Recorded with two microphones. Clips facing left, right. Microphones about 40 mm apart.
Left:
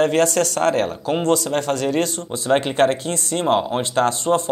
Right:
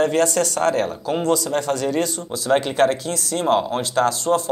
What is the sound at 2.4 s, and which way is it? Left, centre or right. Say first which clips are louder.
Speech: even; left.